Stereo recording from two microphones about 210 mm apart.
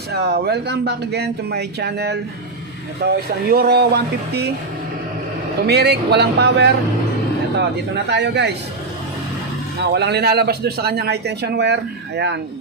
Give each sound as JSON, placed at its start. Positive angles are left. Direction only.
{"t": 0.1, "sound": "a man's voice", "side_deg": -50}
{"t": 5.6, "sound": "a man's voice", "side_deg": -50}
{"t": 9.9, "sound": "a man's voice", "side_deg": -50}